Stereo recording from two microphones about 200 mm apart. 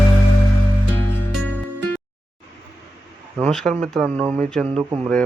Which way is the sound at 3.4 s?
5° left (ahead or behind).